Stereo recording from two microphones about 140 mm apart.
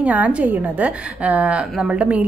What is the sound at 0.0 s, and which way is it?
A woman's voice, 10° right (ahead or behind).